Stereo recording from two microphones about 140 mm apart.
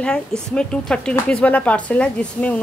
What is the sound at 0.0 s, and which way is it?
Speech, 5° left (ahead or behind).